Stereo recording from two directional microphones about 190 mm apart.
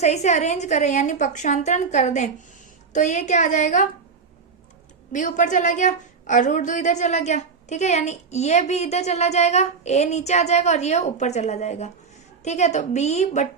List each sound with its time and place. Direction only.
0.0 s a woman's voice: 35° left (ahead or behind)
5.1 s a woman's voice: 40° left (ahead or behind)